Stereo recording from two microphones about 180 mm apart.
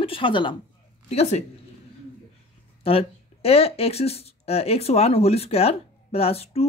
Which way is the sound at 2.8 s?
35° left (ahead or behind).